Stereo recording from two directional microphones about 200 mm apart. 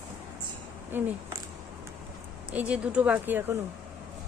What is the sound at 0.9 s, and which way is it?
Speech, 10° right (ahead or behind).